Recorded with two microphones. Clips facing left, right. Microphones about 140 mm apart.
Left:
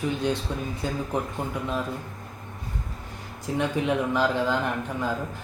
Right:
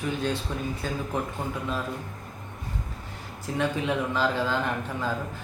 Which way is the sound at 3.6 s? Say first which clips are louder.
Left 2 dB; 15° left (ahead or behind).